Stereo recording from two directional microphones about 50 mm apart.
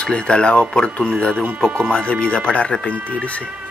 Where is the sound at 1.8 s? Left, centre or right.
Centre.